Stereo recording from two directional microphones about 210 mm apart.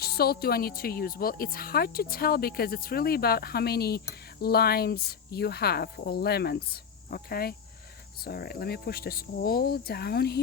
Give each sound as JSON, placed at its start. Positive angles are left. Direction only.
{"t": 0.0, "sound": "speech", "side_deg": 50}